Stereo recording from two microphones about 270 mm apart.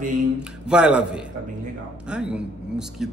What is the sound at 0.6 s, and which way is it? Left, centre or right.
A man's voice, centre.